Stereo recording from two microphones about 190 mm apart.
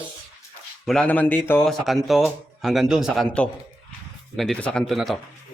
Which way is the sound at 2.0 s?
Centre (ahead or behind).